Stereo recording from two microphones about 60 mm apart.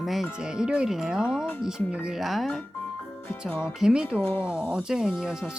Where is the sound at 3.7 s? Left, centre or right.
Centre.